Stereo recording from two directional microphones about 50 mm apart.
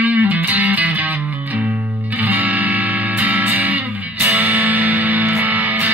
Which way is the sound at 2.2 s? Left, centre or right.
Right.